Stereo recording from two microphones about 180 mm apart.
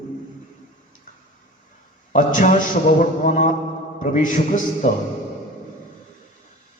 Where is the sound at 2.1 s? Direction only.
45° left (ahead or behind).